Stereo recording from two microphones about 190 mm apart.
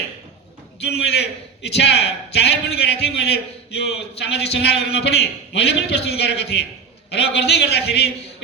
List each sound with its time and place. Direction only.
0.8 s a man's voice: 60° left (ahead or behind)